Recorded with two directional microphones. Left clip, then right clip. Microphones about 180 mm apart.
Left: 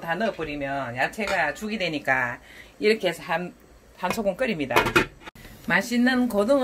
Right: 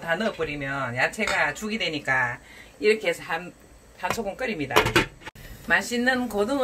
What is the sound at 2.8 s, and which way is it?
Speech, 50° left (ahead or behind).